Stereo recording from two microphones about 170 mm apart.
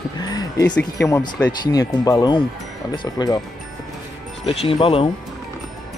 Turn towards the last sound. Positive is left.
turn(degrees=30)  # may be behind; listen again after turning